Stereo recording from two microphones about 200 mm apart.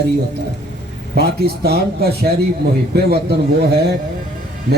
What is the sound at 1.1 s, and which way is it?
A man's voice, 55° right (ahead or behind).